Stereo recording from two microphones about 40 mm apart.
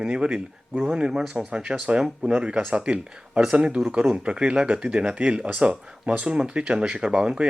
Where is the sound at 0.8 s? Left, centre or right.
Centre.